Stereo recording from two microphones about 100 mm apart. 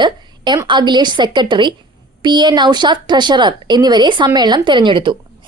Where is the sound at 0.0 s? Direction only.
50° right (ahead or behind).